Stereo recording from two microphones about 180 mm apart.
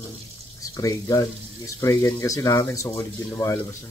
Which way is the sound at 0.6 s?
20° left (ahead or behind).